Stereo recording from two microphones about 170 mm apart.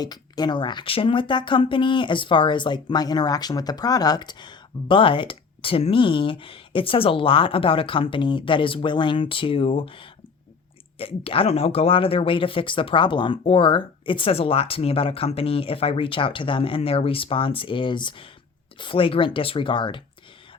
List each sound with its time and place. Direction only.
0.0 s speech: 25° left (ahead or behind)